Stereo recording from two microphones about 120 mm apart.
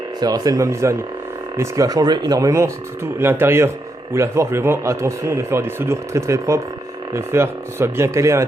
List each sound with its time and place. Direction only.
0.2 s speech: 35° right (ahead or behind)